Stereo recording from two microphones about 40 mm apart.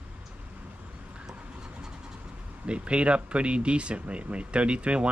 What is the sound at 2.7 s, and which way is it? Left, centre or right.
Speech, right.